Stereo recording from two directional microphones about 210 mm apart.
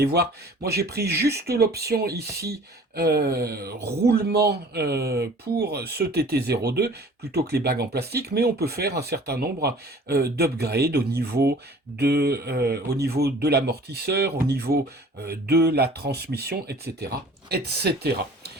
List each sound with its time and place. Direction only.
0.0 s speech: 50° right (ahead or behind)